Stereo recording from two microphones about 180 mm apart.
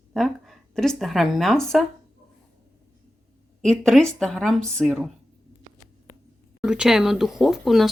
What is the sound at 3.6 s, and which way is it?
Speech, centre (ahead or behind).